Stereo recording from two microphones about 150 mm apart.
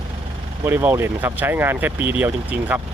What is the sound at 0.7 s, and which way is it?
Speech, 15° right (ahead or behind).